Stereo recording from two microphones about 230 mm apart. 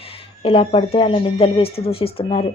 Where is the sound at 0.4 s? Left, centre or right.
Left.